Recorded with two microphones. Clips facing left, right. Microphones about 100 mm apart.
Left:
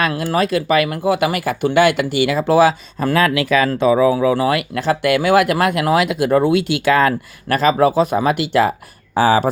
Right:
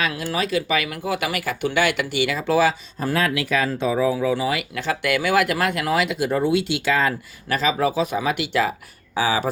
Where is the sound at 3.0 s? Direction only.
90° left.